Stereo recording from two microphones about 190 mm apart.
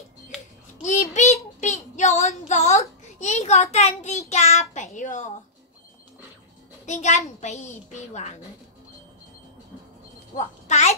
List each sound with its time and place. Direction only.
1.1 s a child's voice: 40° left (ahead or behind)
6.9 s a woman's voice: 40° left (ahead or behind)
10.3 s a woman's voice: 35° left (ahead or behind)